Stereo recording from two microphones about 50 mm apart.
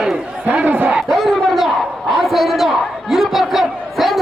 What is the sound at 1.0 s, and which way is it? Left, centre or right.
Battle cry, centre.